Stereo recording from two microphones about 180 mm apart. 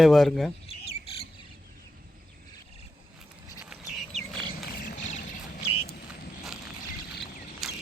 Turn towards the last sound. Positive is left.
turn(degrees=0)  # may be behind; listen again after turning